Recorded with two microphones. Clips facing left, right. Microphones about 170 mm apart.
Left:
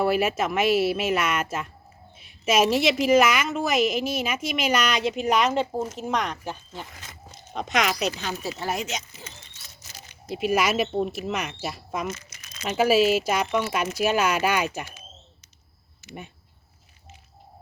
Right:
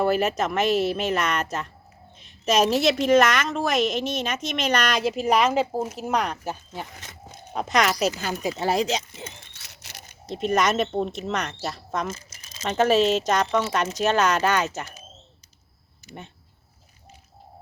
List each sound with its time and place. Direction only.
0.0 s a woman's voice: 5° left (ahead or behind)
7.5 s a woman's voice: centre (ahead or behind)
8.3 s speech: 15° right (ahead or behind)
8.7 s speech: 35° right (ahead or behind)
9.5 s a sound: 75° right (ahead or behind)
10.3 s a woman's voice: 5° left (ahead or behind)